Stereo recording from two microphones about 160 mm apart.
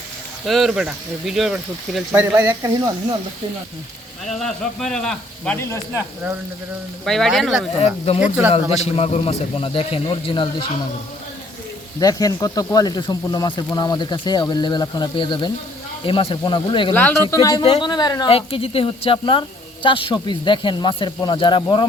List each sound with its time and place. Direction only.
0.4 s speech: centre (ahead or behind)
2.1 s speech: 20° right (ahead or behind)
4.4 s speech: 5° left (ahead or behind)
5.5 s speech: 15° left (ahead or behind)
7.0 s speech: centre (ahead or behind)
7.8 s speech: 40° left (ahead or behind)
11.9 s speech: 25° left (ahead or behind)
16.9 s speech: 10° left (ahead or behind)
17.6 s speech: 30° left (ahead or behind)
18.3 s speech: 35° left (ahead or behind)